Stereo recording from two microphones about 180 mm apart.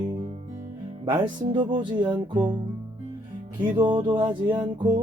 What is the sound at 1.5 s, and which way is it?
Music, 25° right (ahead or behind).